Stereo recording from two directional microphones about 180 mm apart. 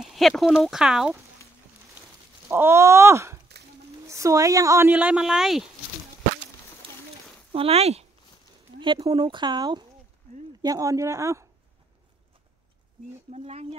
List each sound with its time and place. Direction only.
0.0 s speech: centre (ahead or behind)
2.0 s a sound: 15° right (ahead or behind)
4.1 s speech: 15° right (ahead or behind); by 5.7 s centre (ahead or behind)
7.5 s speech: 35° right (ahead or behind); by 11.4 s 15° right (ahead or behind)
13.3 s speech: 35° right (ahead or behind)